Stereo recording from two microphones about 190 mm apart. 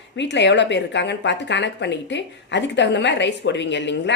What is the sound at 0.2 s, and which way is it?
Speech, 65° left (ahead or behind).